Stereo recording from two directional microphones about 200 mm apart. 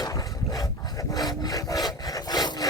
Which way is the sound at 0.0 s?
20° left (ahead or behind).